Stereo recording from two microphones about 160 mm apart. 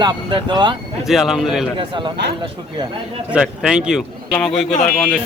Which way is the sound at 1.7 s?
30° right (ahead or behind).